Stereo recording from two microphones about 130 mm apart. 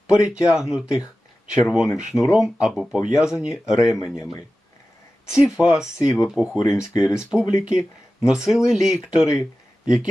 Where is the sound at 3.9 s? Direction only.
20° left (ahead or behind).